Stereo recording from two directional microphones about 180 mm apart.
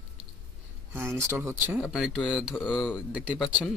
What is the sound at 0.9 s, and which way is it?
Speech, 15° right (ahead or behind).